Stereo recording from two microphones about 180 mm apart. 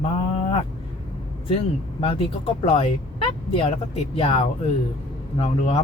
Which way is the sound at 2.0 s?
35° left (ahead or behind).